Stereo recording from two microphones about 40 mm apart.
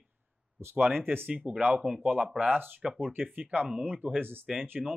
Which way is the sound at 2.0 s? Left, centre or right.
Right.